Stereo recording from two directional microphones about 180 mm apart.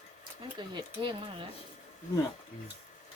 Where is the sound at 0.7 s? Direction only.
25° right (ahead or behind).